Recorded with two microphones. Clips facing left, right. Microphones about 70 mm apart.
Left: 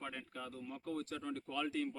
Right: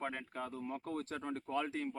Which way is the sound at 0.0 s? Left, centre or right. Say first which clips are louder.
Right 5 dB; right.